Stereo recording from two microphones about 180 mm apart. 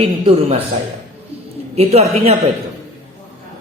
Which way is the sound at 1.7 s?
35° right (ahead or behind).